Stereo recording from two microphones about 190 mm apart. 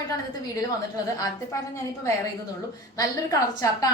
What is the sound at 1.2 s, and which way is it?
Speech, 20° left (ahead or behind).